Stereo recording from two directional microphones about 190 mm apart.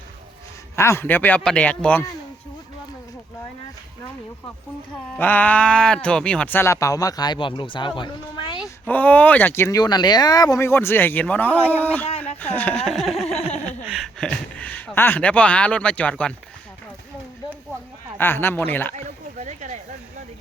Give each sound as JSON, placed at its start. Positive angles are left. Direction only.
{"t": 0.8, "sound": "speech", "side_deg": 15}
{"t": 5.1, "sound": "speech", "side_deg": 10}
{"t": 8.9, "sound": "speech", "side_deg": 10}
{"t": 18.2, "sound": "speech", "side_deg": 10}
{"t": 18.9, "sound": "a sound", "side_deg": -40}